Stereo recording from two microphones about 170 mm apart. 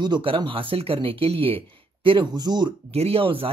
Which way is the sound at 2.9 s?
35° right (ahead or behind).